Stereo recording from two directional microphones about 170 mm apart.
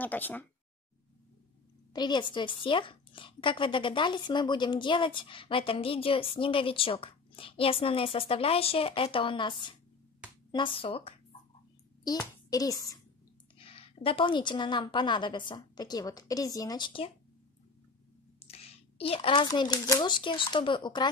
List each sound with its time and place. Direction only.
0.0 s speech: 10° left (ahead or behind)
2.0 s speech: 25° left (ahead or behind)
12.4 s speech: 20° left (ahead or behind)
13.6 s a woman's voice: 35° left (ahead or behind)
18.5 s a woman's voice: 35° left (ahead or behind)